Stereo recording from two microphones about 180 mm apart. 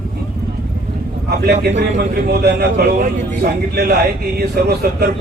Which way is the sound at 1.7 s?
55° right (ahead or behind).